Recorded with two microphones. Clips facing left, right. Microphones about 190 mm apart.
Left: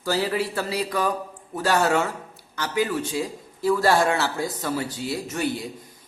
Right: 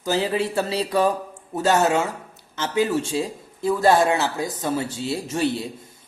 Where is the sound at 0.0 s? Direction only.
20° right (ahead or behind).